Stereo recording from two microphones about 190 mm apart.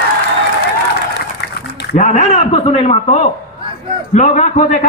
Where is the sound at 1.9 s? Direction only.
40° left (ahead or behind).